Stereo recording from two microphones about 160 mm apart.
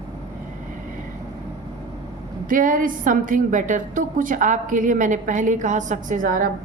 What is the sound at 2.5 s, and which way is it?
A woman's voice, 60° right (ahead or behind).